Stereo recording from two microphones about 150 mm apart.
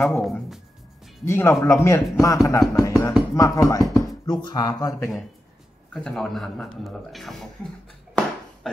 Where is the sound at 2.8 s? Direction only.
20° left (ahead or behind).